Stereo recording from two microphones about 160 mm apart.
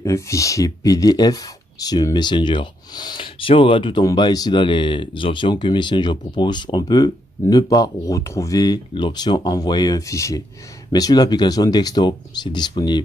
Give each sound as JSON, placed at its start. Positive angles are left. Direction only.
{"t": 0.0, "sound": "speech", "side_deg": 20}